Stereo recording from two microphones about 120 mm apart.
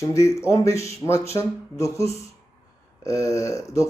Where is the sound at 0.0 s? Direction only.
25° left (ahead or behind).